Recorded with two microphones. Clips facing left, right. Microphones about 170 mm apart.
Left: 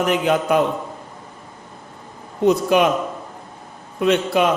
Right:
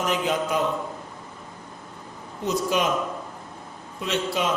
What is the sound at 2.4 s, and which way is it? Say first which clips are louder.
Speech: left 8 dB; 60° left (ahead or behind).